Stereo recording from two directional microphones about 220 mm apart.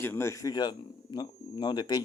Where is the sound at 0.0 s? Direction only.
10° left (ahead or behind).